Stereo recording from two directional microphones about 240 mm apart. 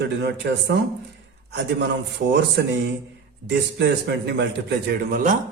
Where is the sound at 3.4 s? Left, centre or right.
Right.